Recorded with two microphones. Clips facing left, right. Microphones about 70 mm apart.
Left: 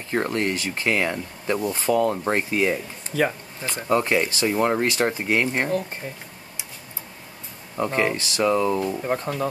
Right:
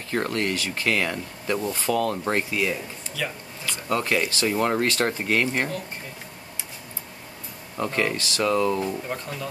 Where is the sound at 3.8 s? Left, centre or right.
Left.